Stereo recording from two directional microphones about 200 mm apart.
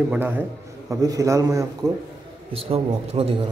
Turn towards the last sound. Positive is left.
turn(degrees=-30)  # may be behind; listen again after turning